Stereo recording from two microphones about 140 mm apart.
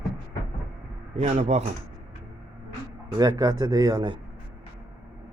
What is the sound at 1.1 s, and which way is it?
Speech, 55° right (ahead or behind).